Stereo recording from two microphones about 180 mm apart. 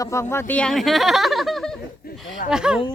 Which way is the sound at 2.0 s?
60° left (ahead or behind).